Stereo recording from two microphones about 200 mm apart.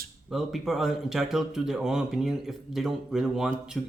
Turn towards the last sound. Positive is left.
turn(degrees=-5)  # may be behind; listen again after turning